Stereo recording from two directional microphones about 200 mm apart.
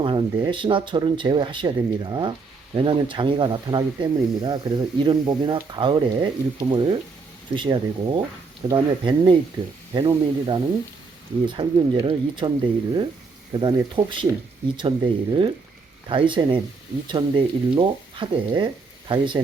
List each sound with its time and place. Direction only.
0.0 s speech: 25° right (ahead or behind)